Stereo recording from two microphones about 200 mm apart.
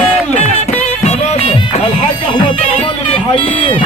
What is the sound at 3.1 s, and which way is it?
Speech, 25° left (ahead or behind).